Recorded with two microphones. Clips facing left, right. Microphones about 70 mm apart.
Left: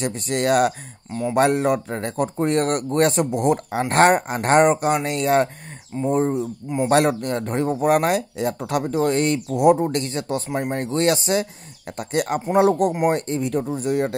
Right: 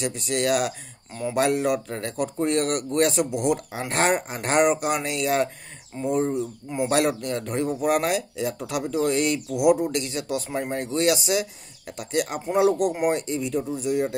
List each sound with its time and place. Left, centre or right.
0.0 s speech: left